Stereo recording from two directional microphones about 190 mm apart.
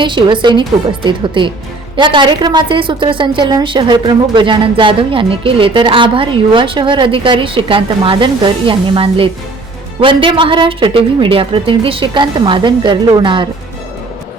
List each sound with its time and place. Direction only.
0.0 s a woman's voice: 25° right (ahead or behind)